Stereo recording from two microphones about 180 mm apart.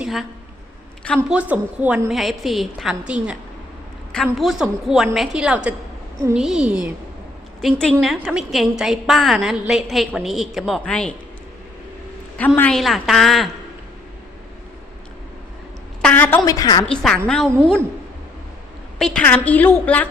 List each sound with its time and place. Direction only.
0.0 s a woman's voice: centre (ahead or behind)
1.3 s a woman's voice: 10° right (ahead or behind)
7.6 s a woman's voice: 5° left (ahead or behind)
12.5 s a woman's voice: 5° left (ahead or behind)
16.0 s a woman's voice: 5° left (ahead or behind)
16.8 s a woman's voice: 5° left (ahead or behind)
18.9 s a woman's voice: 5° left (ahead or behind)